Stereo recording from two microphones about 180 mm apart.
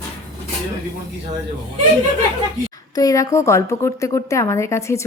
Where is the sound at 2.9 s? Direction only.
20° left (ahead or behind).